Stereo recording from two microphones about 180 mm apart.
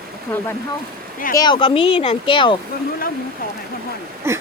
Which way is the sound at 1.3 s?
25° left (ahead or behind).